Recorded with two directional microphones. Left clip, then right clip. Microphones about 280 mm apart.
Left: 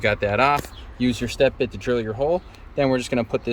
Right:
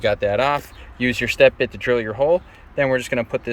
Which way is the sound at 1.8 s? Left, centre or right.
Right.